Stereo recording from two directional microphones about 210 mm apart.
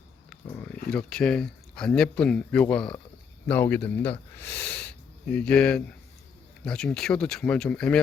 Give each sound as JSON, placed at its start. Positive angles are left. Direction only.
{"t": 0.3, "sound": "speech", "side_deg": 5}